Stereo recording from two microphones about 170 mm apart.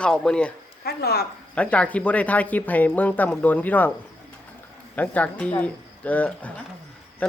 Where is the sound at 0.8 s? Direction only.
70° left (ahead or behind).